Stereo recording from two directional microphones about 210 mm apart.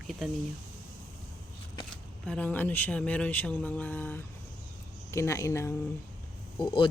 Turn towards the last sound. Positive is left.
turn(degrees=20)  # may be behind; listen again after turning